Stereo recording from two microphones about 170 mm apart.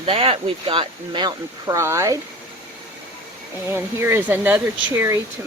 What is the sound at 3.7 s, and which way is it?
Speech, 15° right (ahead or behind).